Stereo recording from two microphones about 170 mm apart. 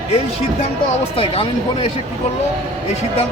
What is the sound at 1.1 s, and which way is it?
Speech, 30° left (ahead or behind).